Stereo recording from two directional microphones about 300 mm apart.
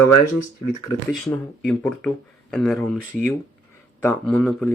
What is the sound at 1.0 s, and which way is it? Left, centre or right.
Speech, centre.